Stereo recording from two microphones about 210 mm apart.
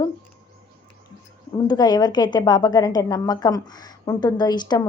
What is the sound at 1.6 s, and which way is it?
A woman's voice, 20° left (ahead or behind).